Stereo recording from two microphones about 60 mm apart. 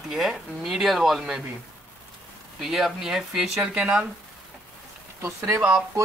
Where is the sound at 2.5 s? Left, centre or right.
Centre.